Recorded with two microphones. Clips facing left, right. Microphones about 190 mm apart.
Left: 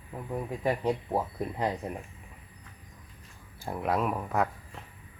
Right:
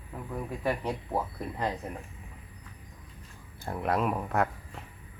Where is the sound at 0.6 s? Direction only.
15° left (ahead or behind).